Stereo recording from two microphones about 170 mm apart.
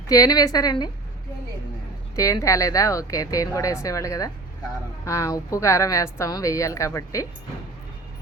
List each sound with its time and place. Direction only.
0.1 s speech: 20° left (ahead or behind)
2.1 s a woman's voice: 20° left (ahead or behind)